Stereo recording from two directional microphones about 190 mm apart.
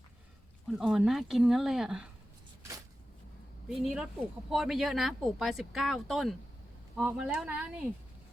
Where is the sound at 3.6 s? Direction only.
5° right (ahead or behind).